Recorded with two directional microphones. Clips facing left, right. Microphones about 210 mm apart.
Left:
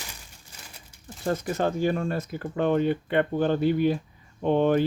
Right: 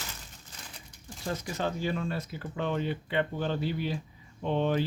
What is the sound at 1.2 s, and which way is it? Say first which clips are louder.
Speech: left 7 dB; 50° left (ahead or behind).